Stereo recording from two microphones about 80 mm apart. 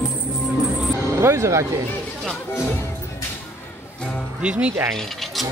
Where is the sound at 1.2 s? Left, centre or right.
Right.